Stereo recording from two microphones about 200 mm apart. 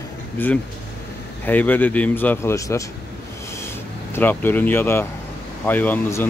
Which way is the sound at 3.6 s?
10° left (ahead or behind).